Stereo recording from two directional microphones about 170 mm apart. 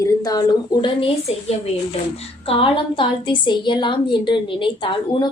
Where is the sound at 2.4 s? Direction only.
30° left (ahead or behind).